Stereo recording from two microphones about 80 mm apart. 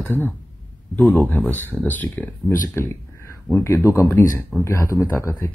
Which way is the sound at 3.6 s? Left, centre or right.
Left.